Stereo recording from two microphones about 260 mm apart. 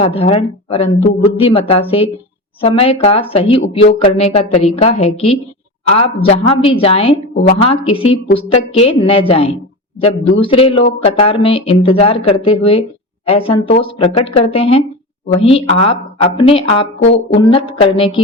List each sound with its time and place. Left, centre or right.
0.0 s speech: left